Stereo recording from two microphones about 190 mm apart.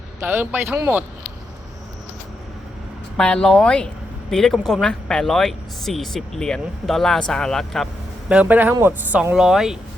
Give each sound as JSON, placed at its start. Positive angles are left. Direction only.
{"t": 0.2, "sound": "speech", "side_deg": -10}
{"t": 3.2, "sound": "speech", "side_deg": 5}